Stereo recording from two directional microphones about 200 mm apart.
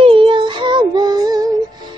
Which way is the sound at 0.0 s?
25° right (ahead or behind).